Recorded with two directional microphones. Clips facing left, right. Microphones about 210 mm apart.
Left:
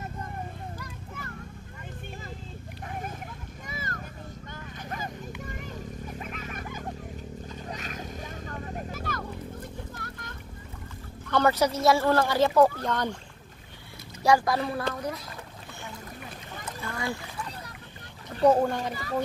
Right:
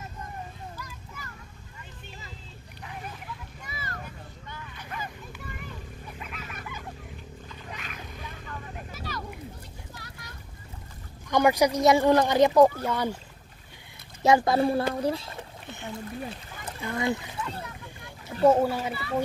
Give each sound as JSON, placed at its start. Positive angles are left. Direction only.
{"t": 0.7, "sound": "vehicle", "side_deg": 55}
{"t": 2.8, "sound": "a sound", "side_deg": 45}
{"t": 5.4, "sound": "children playing", "side_deg": 45}
{"t": 7.4, "sound": "vehicle", "side_deg": 40}
{"t": 9.6, "sound": "a sound", "side_deg": 50}
{"t": 11.2, "sound": "speech", "side_deg": -15}
{"t": 14.2, "sound": "speech", "side_deg": -25}
{"t": 16.8, "sound": "speech", "side_deg": -20}
{"t": 18.4, "sound": "speech", "side_deg": -5}